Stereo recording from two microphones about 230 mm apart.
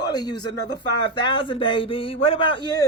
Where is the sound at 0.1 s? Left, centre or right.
Centre.